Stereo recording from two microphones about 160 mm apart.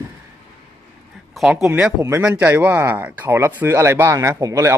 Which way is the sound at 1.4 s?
5° right (ahead or behind).